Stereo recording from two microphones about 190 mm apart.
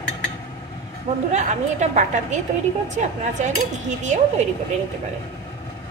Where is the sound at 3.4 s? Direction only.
40° right (ahead or behind).